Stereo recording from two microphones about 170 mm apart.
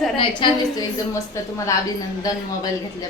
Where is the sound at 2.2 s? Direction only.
20° left (ahead or behind).